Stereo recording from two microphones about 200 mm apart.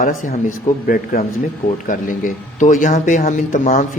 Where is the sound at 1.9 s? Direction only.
40° left (ahead or behind).